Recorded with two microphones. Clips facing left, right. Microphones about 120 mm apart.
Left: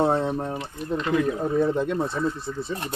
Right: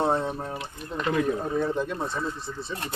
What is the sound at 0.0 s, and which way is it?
Drip, centre (ahead or behind).